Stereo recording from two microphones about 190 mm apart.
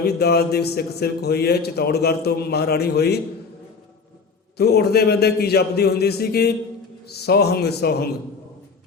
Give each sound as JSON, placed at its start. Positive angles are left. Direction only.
{"t": 0.0, "sound": "a man's voice", "side_deg": 55}
{"t": 4.5, "sound": "a man's voice", "side_deg": 60}